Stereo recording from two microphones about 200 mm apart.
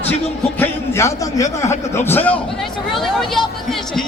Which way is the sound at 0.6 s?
15° left (ahead or behind).